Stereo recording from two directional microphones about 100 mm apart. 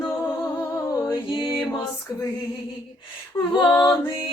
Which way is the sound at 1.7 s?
35° left (ahead or behind).